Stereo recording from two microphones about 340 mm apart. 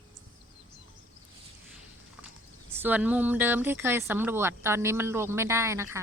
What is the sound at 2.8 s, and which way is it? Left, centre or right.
Speech, centre.